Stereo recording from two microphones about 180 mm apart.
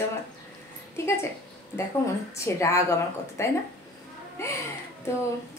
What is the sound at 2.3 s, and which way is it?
Speech, 15° left (ahead or behind).